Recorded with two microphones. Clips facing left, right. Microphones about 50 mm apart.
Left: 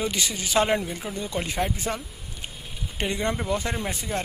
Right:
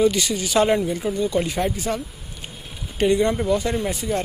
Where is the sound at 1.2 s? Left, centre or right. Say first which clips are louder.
Right 5 dB; left.